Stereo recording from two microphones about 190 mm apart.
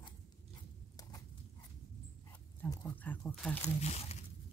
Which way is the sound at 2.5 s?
10° left (ahead or behind).